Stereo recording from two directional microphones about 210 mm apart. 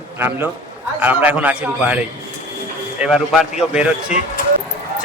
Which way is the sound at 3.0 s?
Centre (ahead or behind).